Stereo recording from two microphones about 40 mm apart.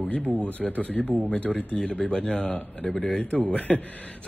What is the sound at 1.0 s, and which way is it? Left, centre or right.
Speech, right.